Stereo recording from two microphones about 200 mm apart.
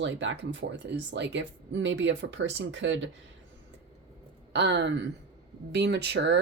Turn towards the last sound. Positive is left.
turn(degrees=-60)  # may be behind; listen again after turning